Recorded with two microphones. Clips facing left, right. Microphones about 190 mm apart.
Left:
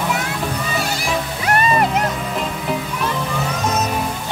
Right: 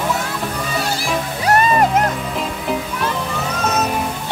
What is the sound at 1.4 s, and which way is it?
Music, 40° right (ahead or behind).